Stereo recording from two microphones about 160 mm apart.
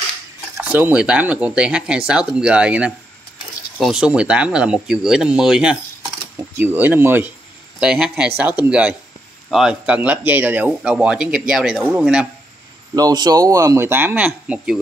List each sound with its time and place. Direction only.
0.6 s speech: 10° right (ahead or behind)
12.9 s speech: 25° right (ahead or behind); by 14.8 s 10° right (ahead or behind)